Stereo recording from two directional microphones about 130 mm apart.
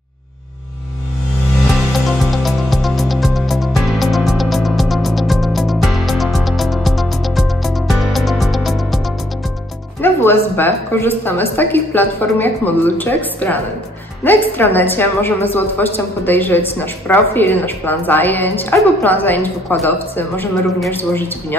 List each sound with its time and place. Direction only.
2.0 s music: centre (ahead or behind)
10.0 s a woman's voice: 15° left (ahead or behind)